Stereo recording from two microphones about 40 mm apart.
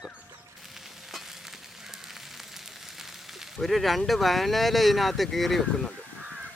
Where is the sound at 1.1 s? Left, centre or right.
Centre.